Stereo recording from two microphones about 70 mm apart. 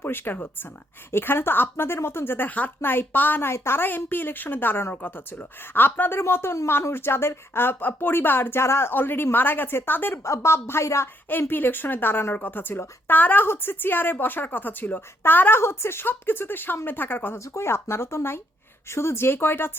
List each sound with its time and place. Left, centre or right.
0.0 s speech: left
3.5 s speech: left
10.2 s speech: left
11.3 s speech: left
17.3 s speech: left